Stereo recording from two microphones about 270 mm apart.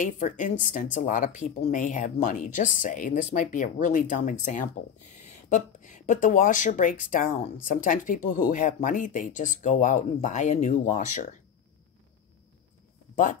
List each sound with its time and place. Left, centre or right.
0.0 s speech: left
13.1 s speech: left